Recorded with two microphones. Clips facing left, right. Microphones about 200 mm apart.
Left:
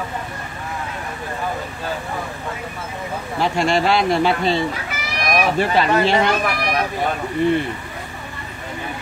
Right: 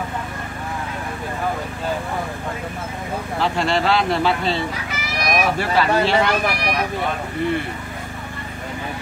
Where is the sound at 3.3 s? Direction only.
15° left (ahead or behind).